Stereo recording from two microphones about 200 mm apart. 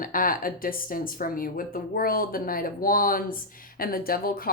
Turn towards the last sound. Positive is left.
turn(degrees=45)  # may be behind; listen again after turning